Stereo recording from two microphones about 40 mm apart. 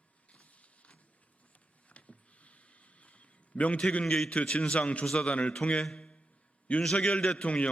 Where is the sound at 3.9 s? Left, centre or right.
Left.